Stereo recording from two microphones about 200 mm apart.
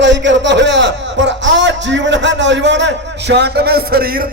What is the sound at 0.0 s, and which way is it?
A man's voice, 65° right (ahead or behind).